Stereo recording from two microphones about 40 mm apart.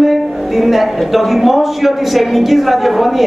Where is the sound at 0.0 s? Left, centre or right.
Centre.